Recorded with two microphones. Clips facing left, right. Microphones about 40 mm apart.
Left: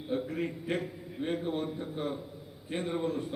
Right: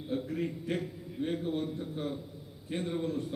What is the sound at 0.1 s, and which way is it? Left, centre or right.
A man's voice, centre.